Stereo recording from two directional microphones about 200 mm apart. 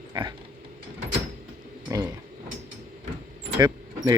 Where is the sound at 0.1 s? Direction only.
20° right (ahead or behind).